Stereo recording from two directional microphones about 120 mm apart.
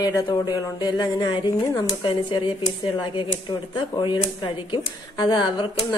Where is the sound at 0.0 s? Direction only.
30° left (ahead or behind).